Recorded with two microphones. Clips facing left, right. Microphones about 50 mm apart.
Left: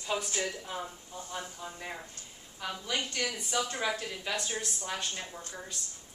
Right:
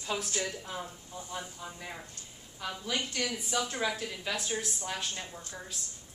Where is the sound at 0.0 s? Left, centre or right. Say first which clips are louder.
Left 1 dB; centre.